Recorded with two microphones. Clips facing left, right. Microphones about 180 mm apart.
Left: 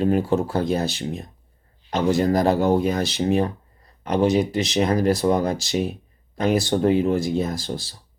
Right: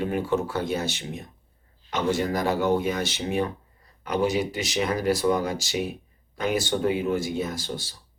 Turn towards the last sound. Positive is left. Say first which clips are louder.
# left 5 dB
turn(degrees=35)  # may be behind; listen again after turning